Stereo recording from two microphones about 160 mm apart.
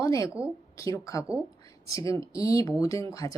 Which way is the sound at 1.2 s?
10° right (ahead or behind).